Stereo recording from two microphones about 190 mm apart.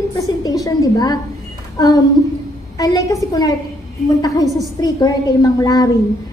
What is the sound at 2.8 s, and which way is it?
A woman's voice, 20° left (ahead or behind).